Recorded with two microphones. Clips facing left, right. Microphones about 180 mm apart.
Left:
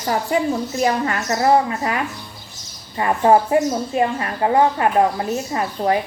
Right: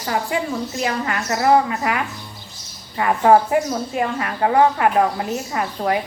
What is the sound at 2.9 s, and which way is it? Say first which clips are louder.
Speech: right 1 dB; 20° left (ahead or behind).